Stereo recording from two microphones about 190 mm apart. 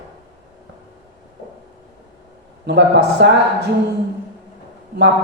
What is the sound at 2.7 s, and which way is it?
Speech, 65° right (ahead or behind).